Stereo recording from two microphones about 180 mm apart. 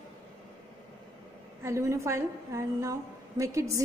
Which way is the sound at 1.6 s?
15° right (ahead or behind).